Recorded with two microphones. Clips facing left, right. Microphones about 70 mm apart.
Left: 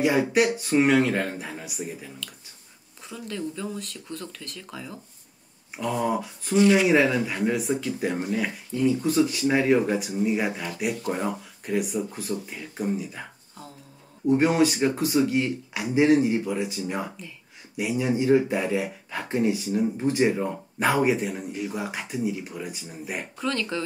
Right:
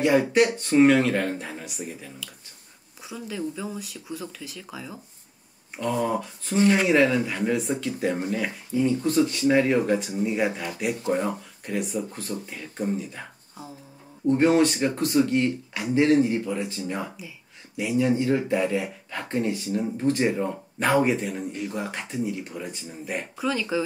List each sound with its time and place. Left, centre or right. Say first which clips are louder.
0.0 s speech: right 1 dB; centre
3.1 s speech: right 1 dB; centre
6.5 s speech: left 2 dB; right
6.8 s speech: even; centre
23.3 s speech: right 2 dB; centre